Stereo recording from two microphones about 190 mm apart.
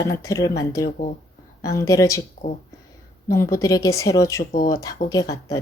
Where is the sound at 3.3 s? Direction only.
15° left (ahead or behind).